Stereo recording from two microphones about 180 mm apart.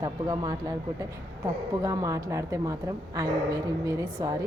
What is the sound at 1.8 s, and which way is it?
A woman's voice, 15° right (ahead or behind).